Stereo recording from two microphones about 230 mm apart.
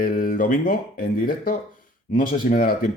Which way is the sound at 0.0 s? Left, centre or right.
Left.